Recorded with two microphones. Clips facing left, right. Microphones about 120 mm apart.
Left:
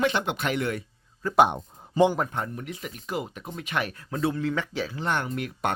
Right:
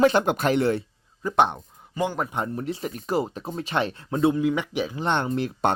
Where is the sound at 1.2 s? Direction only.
15° right (ahead or behind).